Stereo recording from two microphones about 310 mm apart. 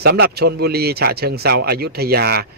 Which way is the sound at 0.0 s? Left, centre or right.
Right.